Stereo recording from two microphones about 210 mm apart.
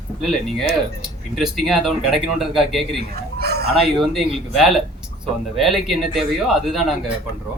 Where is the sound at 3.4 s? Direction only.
50° right (ahead or behind).